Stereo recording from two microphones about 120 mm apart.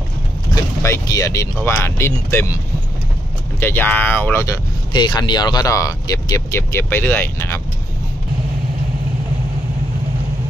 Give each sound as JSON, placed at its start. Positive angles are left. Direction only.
{"t": 0.8, "sound": "speech", "side_deg": 25}
{"t": 4.9, "sound": "speech", "side_deg": 40}